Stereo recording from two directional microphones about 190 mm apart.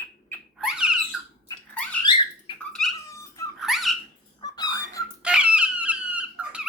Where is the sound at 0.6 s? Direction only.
5° right (ahead or behind).